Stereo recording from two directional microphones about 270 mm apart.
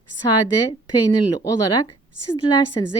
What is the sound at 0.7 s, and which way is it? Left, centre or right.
Speech, centre.